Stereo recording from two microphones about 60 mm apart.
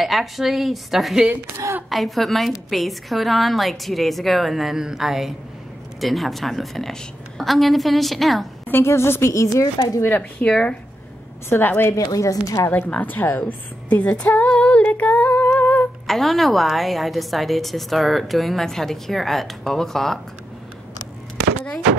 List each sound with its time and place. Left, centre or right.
0.0 s a woman's voice: centre
8.8 s a woman's voice: left
9.3 s a woman's voice: left
10.4 s speech: centre
11.4 s a woman's voice: left
11.9 s a woman's voice: left
12.6 s a woman's voice: left
14.5 s female singing: left
15.6 s humming: left
16.1 s a woman's voice: centre